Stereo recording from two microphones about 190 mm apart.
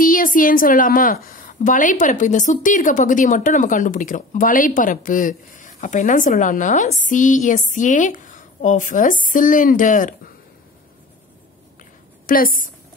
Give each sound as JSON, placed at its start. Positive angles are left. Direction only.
{"t": 0.0, "sound": "a woman's voice", "side_deg": 45}
{"t": 12.3, "sound": "a woman's voice", "side_deg": 50}